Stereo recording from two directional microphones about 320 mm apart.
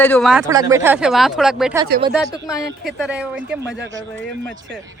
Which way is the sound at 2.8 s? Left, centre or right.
Centre.